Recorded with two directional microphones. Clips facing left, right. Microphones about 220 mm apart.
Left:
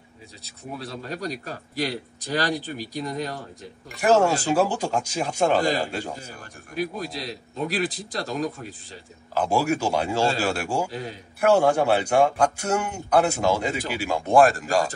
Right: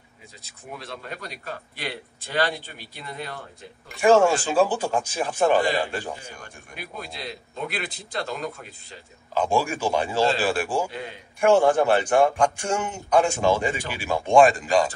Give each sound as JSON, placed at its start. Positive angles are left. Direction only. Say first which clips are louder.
{"t": 0.7, "sound": "a man's voice", "louder": "left 4 dB", "side_deg": 40}
{"t": 4.0, "sound": "a man's voice", "louder": "right 2 dB", "side_deg": 10}
{"t": 6.4, "sound": "a man's voice", "louder": "left 11 dB", "side_deg": 40}
{"t": 9.3, "sound": "a man's voice", "louder": "left 1 dB", "side_deg": 10}
{"t": 10.9, "sound": "a man's voice", "louder": "left 2 dB", "side_deg": 40}
{"t": 11.4, "sound": "a man's voice", "louder": "right 1 dB", "side_deg": 10}